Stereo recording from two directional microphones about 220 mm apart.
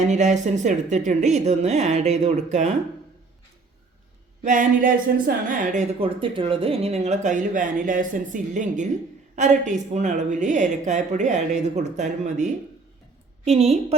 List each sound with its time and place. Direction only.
0.0 s speech: 30° right (ahead or behind)
4.4 s a woman's voice: 35° right (ahead or behind)